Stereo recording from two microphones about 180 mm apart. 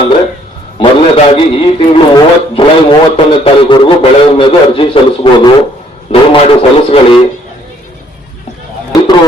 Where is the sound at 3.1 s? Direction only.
30° left (ahead or behind).